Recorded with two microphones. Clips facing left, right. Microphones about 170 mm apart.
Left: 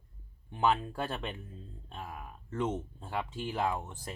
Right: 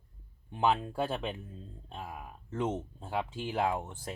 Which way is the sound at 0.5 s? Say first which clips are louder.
Even; 10° right (ahead or behind).